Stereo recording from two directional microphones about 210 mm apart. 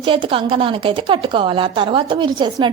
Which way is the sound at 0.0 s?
25° right (ahead or behind).